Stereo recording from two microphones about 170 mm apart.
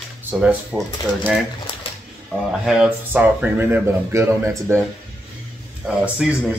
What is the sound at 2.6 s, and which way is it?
Speech, 5° right (ahead or behind).